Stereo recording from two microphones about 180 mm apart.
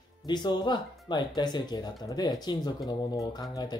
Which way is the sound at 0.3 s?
25° left (ahead or behind).